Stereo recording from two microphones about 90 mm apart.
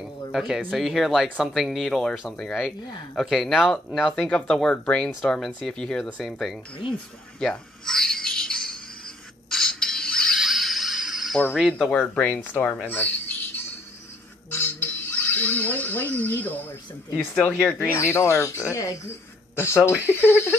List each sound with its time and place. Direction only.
0.3 s speech: 5° right (ahead or behind)
4.1 s speech: 10° left (ahead or behind)
7.3 s a sound: 10° left (ahead or behind)
10.3 s music: centre (ahead or behind)
11.5 s speech: 5° right (ahead or behind)
11.9 s speech: 15° left (ahead or behind)
12.8 s a sound: 20° left (ahead or behind)
17.3 s speech: 10° left (ahead or behind)
17.9 s speech: 30° left (ahead or behind)